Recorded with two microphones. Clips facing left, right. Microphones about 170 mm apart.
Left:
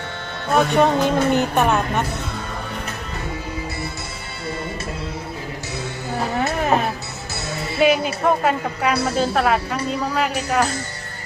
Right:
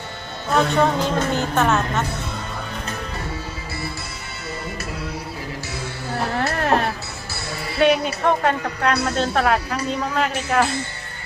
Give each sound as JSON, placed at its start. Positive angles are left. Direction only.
{"t": 0.5, "sound": "speech", "side_deg": 15}
{"t": 6.1, "sound": "music", "side_deg": 0}
{"t": 7.8, "sound": "speech", "side_deg": 5}